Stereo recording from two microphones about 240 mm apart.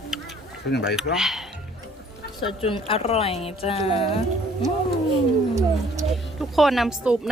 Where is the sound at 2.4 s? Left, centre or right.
Left.